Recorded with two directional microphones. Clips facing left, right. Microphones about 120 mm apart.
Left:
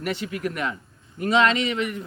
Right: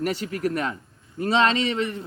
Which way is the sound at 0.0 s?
40° right (ahead or behind).